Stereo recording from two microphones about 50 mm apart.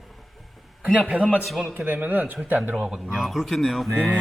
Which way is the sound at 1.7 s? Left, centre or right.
Right.